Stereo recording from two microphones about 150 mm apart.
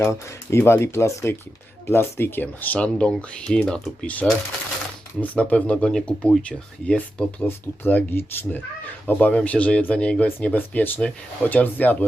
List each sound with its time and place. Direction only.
0.0 s speech: 15° left (ahead or behind)